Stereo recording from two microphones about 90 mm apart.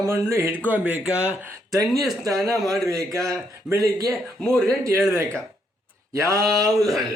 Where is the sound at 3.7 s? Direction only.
40° right (ahead or behind).